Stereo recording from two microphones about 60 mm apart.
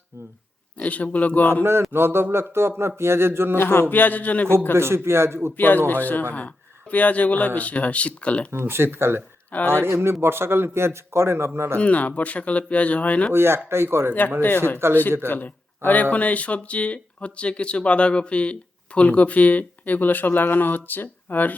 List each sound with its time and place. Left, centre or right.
0.8 s speech: left
1.9 s a man's voice: right
3.6 s a sound: left
3.8 s speech: left
4.7 s a man's voice: right
5.5 s speech: left
8.5 s speech: right
9.5 s speech: left
9.7 s a man's voice: right
11.8 s speech: left
13.3 s a man's voice: right
15.3 s speech: left